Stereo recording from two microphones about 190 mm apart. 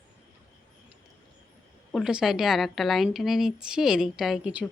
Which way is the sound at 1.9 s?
5° right (ahead or behind).